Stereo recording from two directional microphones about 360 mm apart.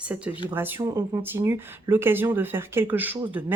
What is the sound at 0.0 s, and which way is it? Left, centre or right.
A woman's voice, centre.